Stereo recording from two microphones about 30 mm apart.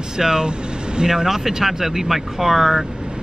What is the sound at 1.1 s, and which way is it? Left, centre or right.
Speech, centre.